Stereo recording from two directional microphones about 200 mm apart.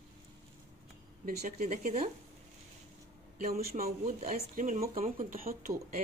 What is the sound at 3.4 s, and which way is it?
Speech, 50° right (ahead or behind).